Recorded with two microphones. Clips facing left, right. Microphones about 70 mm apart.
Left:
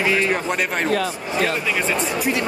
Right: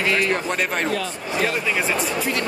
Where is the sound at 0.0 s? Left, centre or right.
Centre.